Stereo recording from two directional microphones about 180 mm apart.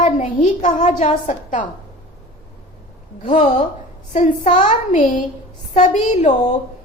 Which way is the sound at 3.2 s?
40° left (ahead or behind).